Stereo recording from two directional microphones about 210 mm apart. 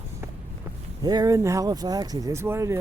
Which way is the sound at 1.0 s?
15° right (ahead or behind).